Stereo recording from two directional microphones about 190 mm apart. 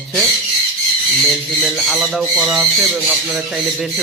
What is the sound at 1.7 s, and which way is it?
Speech, centre (ahead or behind).